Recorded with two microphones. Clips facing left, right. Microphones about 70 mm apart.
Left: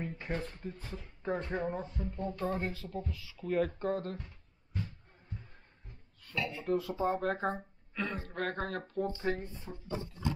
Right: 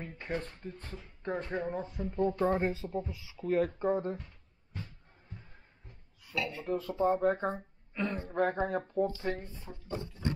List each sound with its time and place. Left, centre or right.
0.2 s speech: centre
1.9 s speech: centre
2.1 s speech: right
3.3 s speech: centre
6.2 s a sound: centre
6.6 s speech: centre
9.2 s speech: centre